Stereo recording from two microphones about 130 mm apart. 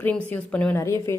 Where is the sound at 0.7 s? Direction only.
20° left (ahead or behind).